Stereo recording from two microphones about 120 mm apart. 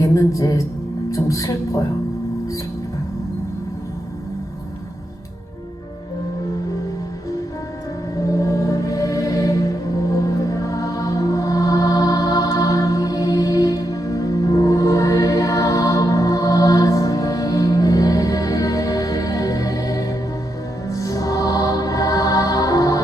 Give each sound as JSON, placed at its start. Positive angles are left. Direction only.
{"t": 0.0, "sound": "speech", "side_deg": 25}
{"t": 8.1, "sound": "music", "side_deg": 30}